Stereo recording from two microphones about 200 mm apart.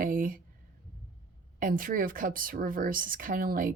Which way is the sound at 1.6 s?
45° right (ahead or behind).